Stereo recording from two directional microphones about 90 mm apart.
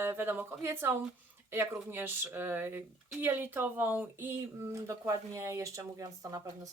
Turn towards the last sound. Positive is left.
turn(degrees=-40)  # may be behind; listen again after turning